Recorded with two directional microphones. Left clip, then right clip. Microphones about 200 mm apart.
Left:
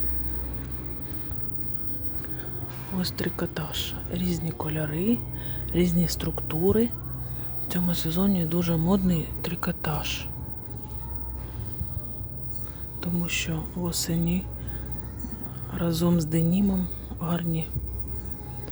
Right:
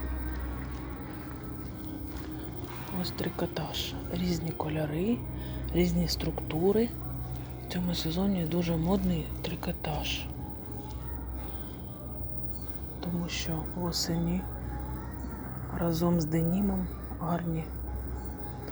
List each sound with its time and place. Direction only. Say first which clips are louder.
3.0 s speech: left 4 dB; 30° left (ahead or behind)
13.0 s speech: left 6 dB; 30° left (ahead or behind)
15.7 s speech: left 3 dB; 30° left (ahead or behind)